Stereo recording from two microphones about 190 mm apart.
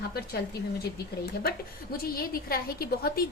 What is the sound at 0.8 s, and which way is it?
A woman's voice, 55° left (ahead or behind).